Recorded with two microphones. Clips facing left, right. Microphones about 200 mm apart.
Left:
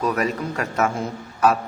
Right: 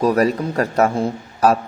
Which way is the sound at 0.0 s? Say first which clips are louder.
Right 6 dB; 35° right (ahead or behind).